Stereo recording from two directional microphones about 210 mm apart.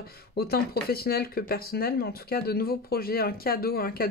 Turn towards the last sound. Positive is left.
turn(degrees=45)  # may be behind; listen again after turning